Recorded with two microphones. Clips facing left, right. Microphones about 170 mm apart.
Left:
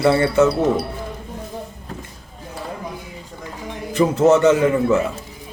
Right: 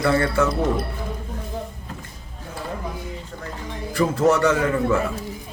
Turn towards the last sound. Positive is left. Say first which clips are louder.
# left 4 dB
turn(degrees=20)  # may be behind; listen again after turning